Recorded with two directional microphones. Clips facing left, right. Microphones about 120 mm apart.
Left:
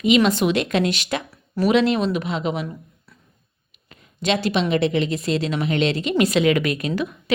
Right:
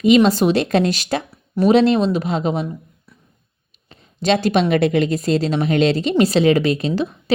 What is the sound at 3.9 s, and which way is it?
A woman's voice, 35° right (ahead or behind).